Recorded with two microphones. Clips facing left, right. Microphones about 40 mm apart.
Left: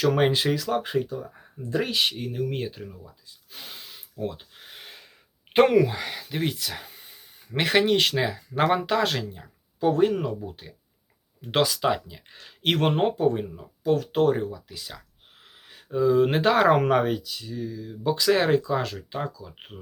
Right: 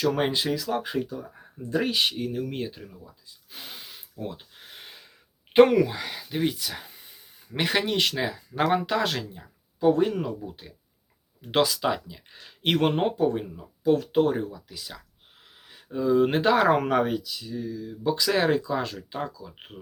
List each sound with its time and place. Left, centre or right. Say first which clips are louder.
0.0 s speech: left 3 dB; centre
1.1 s speech: left 3 dB; centre
3.5 s gasp: even; centre
5.5 s speech: right 1 dB; centre